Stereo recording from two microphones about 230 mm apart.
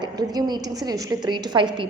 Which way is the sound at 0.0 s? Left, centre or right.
Centre.